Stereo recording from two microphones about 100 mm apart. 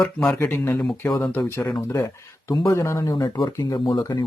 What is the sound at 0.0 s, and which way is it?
Speech, 10° left (ahead or behind).